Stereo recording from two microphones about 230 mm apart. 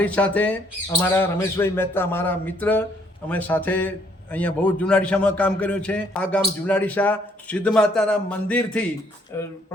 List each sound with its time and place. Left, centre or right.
0.0 s a man's voice: centre